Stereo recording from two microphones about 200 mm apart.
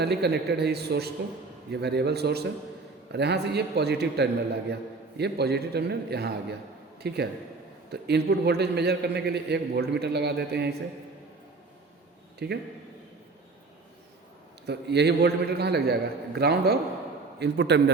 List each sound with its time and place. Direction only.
0.0 s a man's voice: 55° right (ahead or behind)
12.4 s a man's voice: 55° right (ahead or behind)
14.7 s a man's voice: 55° right (ahead or behind)